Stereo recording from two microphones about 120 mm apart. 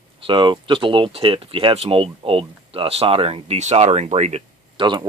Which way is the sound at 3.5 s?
65° right (ahead or behind).